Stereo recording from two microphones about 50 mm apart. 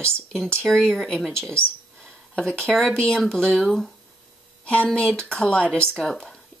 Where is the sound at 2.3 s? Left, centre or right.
Left.